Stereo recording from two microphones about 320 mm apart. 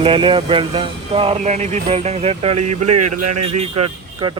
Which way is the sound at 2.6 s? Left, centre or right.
Right.